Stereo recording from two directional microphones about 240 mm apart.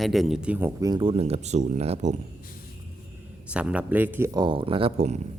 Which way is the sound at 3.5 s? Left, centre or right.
Centre.